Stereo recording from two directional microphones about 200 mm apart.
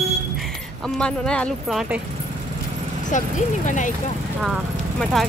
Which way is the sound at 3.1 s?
40° left (ahead or behind).